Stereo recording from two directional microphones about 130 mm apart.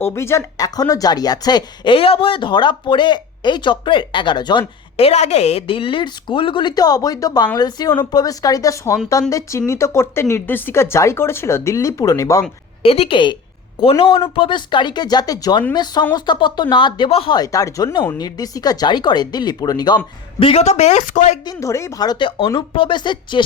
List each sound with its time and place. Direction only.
0.0 s speech: 20° left (ahead or behind); by 4.6 s 35° left (ahead or behind)
4.9 s speech: 55° left (ahead or behind); by 12.4 s 25° left (ahead or behind)
12.8 s a woman's voice: 50° left (ahead or behind)
17.3 s speech: 25° left (ahead or behind)
20.4 s a woman's voice: 50° left (ahead or behind); by 21.3 s 70° left (ahead or behind)
21.4 s speech: 25° left (ahead or behind)